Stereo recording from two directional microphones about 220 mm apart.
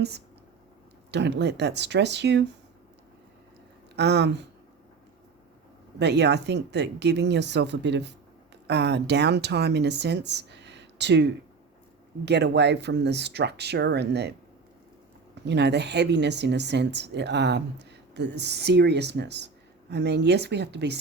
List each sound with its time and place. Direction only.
1.1 s speech: 50° right (ahead or behind)
3.9 s speech: 50° right (ahead or behind)
6.0 s speech: 50° right (ahead or behind)
15.4 s speech: 50° right (ahead or behind)